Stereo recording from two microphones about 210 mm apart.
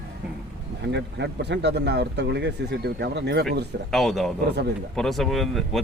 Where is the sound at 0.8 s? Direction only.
55° right (ahead or behind).